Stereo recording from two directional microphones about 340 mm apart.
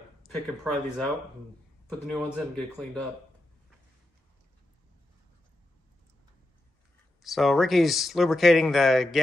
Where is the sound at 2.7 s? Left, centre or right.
Centre.